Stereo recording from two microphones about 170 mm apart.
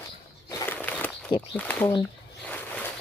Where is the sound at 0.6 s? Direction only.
10° left (ahead or behind).